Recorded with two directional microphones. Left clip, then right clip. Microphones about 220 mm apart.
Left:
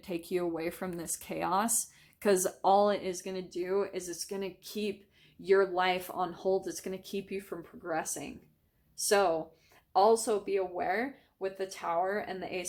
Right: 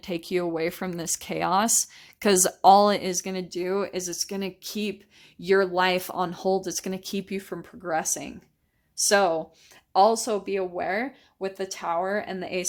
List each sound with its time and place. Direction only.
0.0 s speech: 35° right (ahead or behind)